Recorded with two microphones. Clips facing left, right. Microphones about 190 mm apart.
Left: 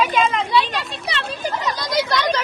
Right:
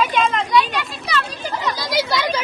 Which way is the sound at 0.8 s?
30° left (ahead or behind).